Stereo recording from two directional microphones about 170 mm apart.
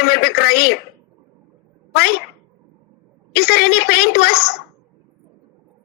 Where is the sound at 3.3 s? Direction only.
65° left (ahead or behind).